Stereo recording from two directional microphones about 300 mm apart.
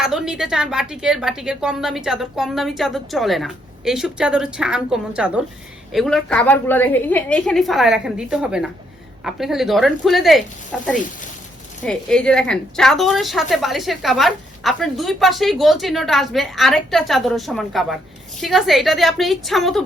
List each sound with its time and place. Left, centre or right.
0.0 s a woman's voice: centre